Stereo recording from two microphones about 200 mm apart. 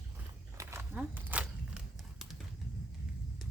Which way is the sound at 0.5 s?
10° right (ahead or behind).